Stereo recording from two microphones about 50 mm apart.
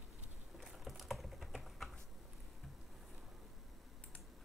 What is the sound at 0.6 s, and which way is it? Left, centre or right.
Typing, centre.